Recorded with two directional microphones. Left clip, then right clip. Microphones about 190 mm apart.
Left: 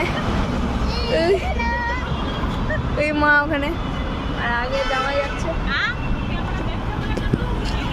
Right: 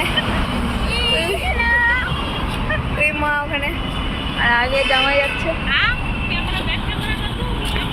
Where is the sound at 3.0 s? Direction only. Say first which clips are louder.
Left 3 dB; 55° left (ahead or behind).